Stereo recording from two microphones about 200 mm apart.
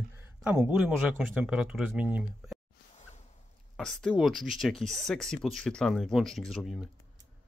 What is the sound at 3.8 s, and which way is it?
Speech, centre (ahead or behind).